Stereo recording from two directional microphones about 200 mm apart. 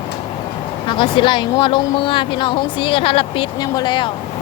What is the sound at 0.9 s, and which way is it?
Speech, 25° left (ahead or behind).